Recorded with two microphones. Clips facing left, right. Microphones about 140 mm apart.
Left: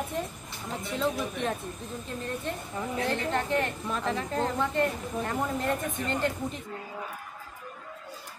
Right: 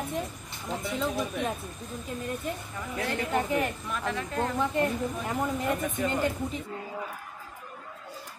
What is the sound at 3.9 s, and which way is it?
Speech, 30° left (ahead or behind).